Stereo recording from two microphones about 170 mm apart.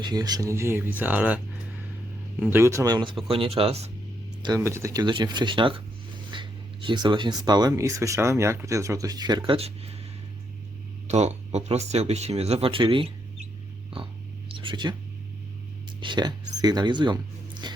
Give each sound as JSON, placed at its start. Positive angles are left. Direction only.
{"t": 0.0, "sound": "speech", "side_deg": -25}
{"t": 2.4, "sound": "speech", "side_deg": -15}
{"t": 4.4, "sound": "speech", "side_deg": -15}
{"t": 11.1, "sound": "speech", "side_deg": -40}
{"t": 16.0, "sound": "speech", "side_deg": -25}